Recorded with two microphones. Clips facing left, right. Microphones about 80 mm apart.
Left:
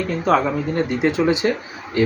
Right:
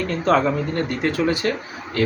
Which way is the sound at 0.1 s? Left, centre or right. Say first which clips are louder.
Even; centre.